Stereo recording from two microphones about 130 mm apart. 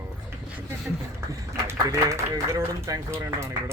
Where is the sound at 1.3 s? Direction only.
25° right (ahead or behind).